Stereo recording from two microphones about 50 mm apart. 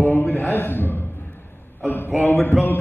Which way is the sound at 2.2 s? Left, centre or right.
Left.